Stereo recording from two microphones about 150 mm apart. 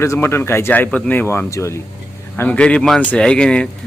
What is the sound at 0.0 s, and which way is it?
Speech, 15° left (ahead or behind).